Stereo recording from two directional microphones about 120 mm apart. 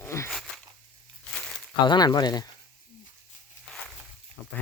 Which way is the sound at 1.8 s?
40° left (ahead or behind).